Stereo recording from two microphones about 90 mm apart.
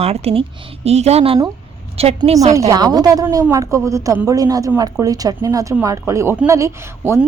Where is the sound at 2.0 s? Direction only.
90° right.